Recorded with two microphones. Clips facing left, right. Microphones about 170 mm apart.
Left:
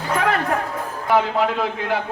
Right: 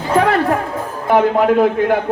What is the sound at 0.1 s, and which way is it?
Music, 30° right (ahead or behind).